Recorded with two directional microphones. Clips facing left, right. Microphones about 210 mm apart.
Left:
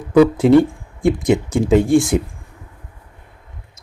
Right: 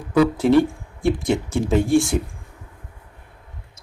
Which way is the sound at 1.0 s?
15° left (ahead or behind).